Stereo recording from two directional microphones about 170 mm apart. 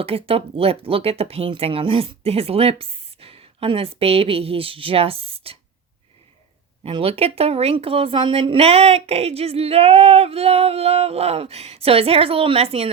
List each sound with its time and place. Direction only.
0.0 s a woman's voice: 35° right (ahead or behind)
6.8 s a woman's voice: 35° right (ahead or behind)